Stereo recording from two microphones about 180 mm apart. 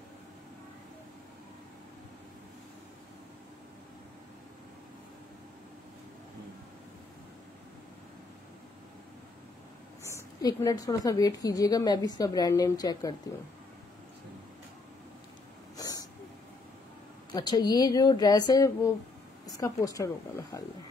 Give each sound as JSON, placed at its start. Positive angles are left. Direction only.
{"t": 10.1, "sound": "a woman's voice", "side_deg": 15}
{"t": 15.7, "sound": "a sound", "side_deg": 20}
{"t": 17.3, "sound": "a woman's voice", "side_deg": 25}